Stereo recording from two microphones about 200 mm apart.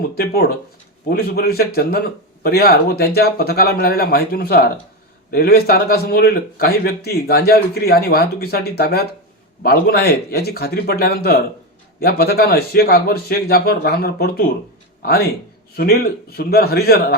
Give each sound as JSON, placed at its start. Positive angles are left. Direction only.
{"t": 0.2, "sound": "a man's voice", "side_deg": 50}
{"t": 15.7, "sound": "a man's voice", "side_deg": 50}